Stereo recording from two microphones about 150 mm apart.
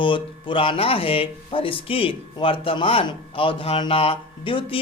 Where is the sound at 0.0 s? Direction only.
35° left (ahead or behind).